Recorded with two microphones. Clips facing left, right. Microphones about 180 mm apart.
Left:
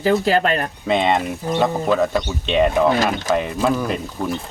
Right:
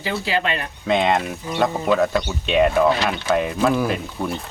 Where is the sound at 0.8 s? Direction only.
Centre (ahead or behind).